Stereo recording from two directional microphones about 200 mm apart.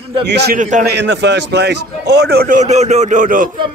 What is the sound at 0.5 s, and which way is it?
Speech, 40° right (ahead or behind).